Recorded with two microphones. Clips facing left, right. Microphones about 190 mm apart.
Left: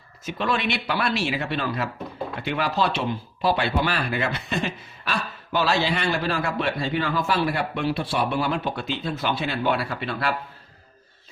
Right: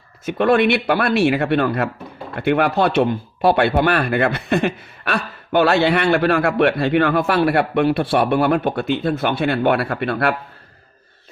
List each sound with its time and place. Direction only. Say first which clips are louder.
0.3 s speech: right 10 dB; 55° right (ahead or behind)